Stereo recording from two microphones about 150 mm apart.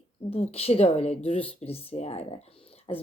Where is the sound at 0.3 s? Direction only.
40° left (ahead or behind).